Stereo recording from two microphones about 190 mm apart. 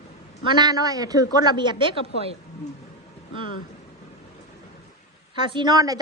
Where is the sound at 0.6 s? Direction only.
20° right (ahead or behind).